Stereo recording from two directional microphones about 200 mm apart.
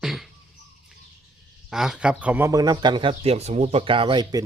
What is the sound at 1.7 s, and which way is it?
A man's voice, centre (ahead or behind).